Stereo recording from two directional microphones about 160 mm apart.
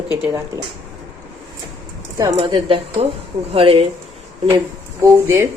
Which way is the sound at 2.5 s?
35° right (ahead or behind).